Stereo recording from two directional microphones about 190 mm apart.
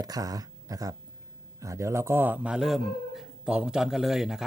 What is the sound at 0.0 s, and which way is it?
A man's voice, 20° right (ahead or behind).